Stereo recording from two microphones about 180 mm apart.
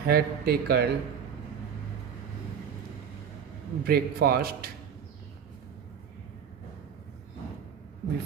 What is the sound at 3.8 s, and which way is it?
Speech, 55° right (ahead or behind).